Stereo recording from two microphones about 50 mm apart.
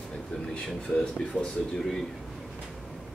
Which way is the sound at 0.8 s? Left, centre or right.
Centre.